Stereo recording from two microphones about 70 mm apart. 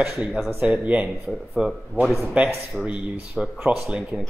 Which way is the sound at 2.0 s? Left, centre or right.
Centre.